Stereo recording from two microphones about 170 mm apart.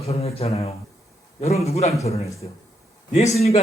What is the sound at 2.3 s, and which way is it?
Speech, 20° left (ahead or behind).